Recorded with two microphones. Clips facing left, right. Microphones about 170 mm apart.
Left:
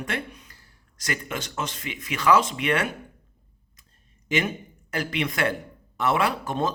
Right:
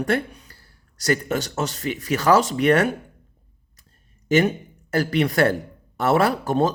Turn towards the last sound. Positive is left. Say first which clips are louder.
# right 6 dB
turn(degrees=-40)  # may be behind; listen again after turning